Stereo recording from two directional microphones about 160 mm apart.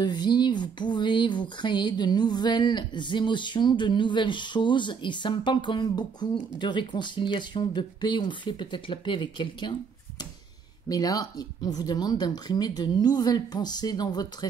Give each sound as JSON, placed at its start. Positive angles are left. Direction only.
{"t": 0.0, "sound": "speech", "side_deg": 25}
{"t": 10.9, "sound": "speech", "side_deg": 25}